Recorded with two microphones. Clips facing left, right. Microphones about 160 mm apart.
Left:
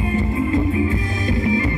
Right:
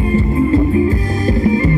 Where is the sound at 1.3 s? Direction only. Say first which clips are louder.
Right 6 dB; 40° right (ahead or behind).